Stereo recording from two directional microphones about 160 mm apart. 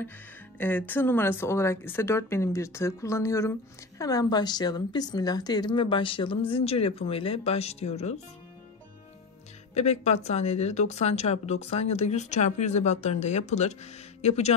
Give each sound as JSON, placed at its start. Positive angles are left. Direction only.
{"t": 0.6, "sound": "a woman's voice", "side_deg": 10}
{"t": 9.8, "sound": "speech", "side_deg": 45}